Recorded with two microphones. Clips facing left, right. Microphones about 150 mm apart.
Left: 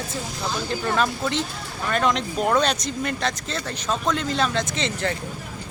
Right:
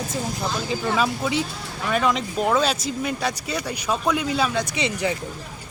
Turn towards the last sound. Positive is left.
turn(degrees=-10)  # may be behind; listen again after turning